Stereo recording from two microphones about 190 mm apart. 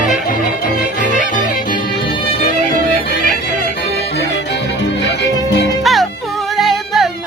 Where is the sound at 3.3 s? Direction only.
55° left (ahead or behind).